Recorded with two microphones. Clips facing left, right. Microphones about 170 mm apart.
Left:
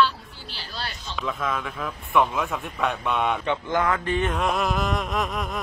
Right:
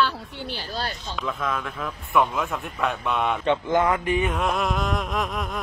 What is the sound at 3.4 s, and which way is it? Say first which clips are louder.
Speech: right 3 dB; 20° right (ahead or behind).